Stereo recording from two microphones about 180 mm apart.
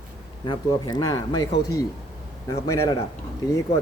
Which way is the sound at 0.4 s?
25° left (ahead or behind).